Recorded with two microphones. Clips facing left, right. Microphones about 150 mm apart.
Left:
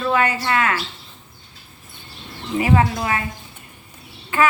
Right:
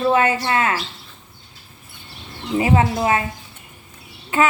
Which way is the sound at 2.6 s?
25° right (ahead or behind).